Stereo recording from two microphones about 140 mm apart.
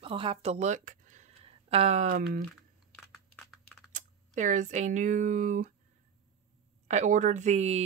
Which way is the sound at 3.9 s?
65° right (ahead or behind).